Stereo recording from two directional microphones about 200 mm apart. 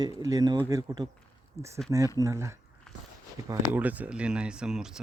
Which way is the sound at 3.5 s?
10° right (ahead or behind).